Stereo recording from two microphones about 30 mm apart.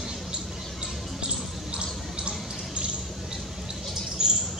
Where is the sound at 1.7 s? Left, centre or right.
Right.